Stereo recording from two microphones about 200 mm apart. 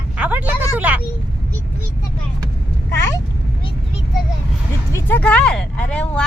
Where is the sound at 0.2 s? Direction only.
10° right (ahead or behind).